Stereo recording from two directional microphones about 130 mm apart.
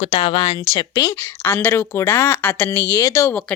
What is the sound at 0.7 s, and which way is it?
Speech, 25° left (ahead or behind).